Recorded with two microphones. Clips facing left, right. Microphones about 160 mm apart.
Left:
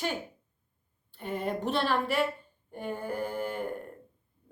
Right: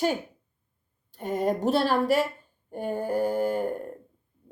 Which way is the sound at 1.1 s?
40° right (ahead or behind).